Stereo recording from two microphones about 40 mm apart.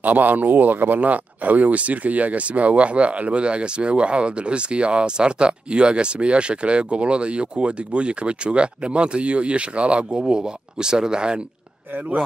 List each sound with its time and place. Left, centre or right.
0.0 s speech: right